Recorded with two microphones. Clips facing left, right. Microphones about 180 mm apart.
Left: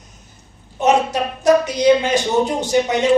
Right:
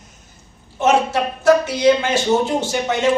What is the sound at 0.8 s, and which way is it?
Speech, 15° left (ahead or behind).